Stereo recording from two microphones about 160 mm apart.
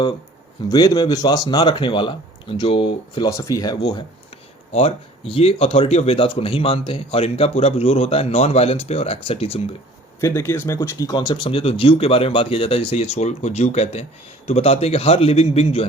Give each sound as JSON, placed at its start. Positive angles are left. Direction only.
{"t": 0.7, "sound": "speech", "side_deg": 25}
{"t": 4.7, "sound": "speech", "side_deg": 40}
{"t": 10.2, "sound": "speech", "side_deg": 15}